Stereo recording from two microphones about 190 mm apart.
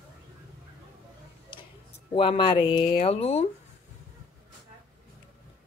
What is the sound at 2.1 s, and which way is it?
Speech, 25° left (ahead or behind).